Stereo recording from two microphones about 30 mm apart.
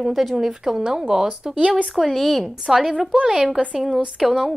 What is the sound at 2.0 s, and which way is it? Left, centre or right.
Speech, centre.